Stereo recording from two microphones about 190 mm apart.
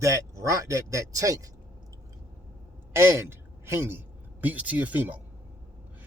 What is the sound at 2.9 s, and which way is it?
A woman's voice, 15° right (ahead or behind).